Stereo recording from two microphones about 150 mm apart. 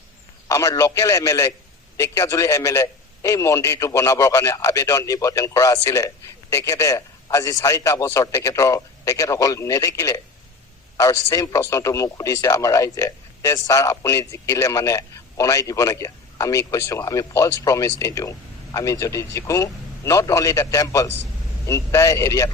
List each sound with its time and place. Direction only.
0.4 s a man's voice: 20° left (ahead or behind)